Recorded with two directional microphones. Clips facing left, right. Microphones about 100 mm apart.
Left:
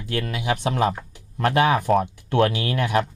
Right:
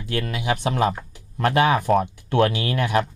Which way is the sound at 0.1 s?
15° right (ahead or behind).